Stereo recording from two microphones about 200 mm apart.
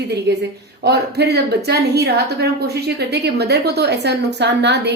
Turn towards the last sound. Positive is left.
turn(degrees=-55)  # may be behind; listen again after turning